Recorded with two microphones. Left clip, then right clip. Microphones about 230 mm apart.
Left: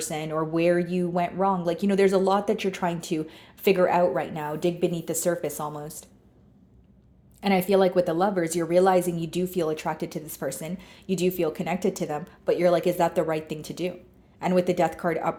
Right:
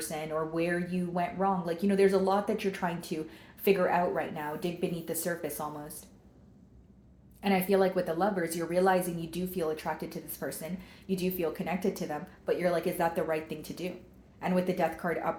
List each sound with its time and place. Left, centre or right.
0.0 s a woman's voice: left
7.4 s a woman's voice: left